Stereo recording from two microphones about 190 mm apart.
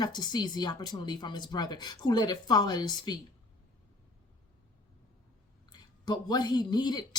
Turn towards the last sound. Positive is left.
turn(degrees=20)  # may be behind; listen again after turning